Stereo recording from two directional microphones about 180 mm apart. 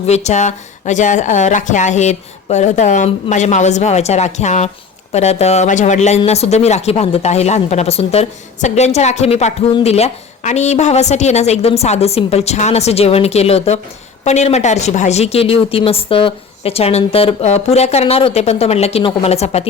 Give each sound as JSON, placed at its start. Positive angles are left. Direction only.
{"t": 0.0, "sound": "speech", "side_deg": 40}